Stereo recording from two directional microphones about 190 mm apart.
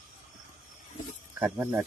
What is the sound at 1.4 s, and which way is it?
Speech, 10° right (ahead or behind).